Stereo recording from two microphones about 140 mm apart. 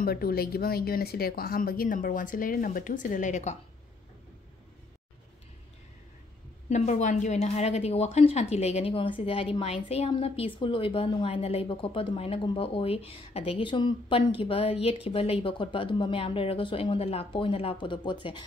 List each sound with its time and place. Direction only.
0.0 s speech: 90° left; by 3.5 s 60° left (ahead or behind)
6.7 s a woman's voice: 60° left (ahead or behind); by 18.4 s 35° left (ahead or behind)